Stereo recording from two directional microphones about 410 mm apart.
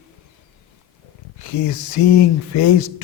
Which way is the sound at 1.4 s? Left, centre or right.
Left.